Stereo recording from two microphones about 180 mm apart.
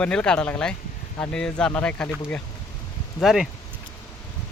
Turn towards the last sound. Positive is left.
turn(degrees=0)  # may be behind; listen again after turning